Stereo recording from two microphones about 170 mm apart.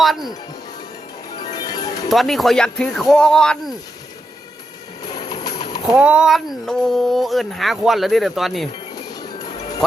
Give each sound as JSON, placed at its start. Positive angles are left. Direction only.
{"t": 0.0, "sound": "music", "side_deg": 0}
{"t": 1.5, "sound": "music", "side_deg": 25}
{"t": 2.0, "sound": "speech", "side_deg": 0}
{"t": 5.0, "sound": "music", "side_deg": 25}
{"t": 5.9, "sound": "speech", "side_deg": -5}
{"t": 9.0, "sound": "music", "side_deg": 25}